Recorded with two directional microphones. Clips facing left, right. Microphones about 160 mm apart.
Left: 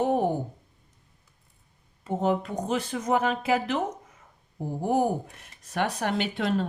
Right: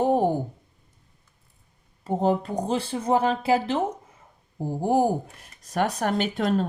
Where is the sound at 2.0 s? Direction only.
35° right (ahead or behind).